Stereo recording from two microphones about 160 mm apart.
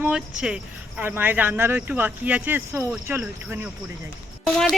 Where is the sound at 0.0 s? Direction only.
5° right (ahead or behind).